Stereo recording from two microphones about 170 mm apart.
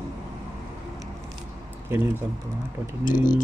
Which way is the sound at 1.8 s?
15° right (ahead or behind).